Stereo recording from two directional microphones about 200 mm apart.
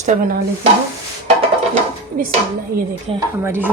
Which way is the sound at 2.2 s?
45° right (ahead or behind).